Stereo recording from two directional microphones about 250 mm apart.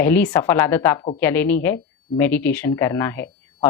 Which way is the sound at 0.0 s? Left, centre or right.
Centre.